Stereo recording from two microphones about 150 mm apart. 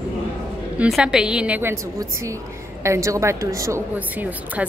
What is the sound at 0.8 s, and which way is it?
Speech, 5° right (ahead or behind).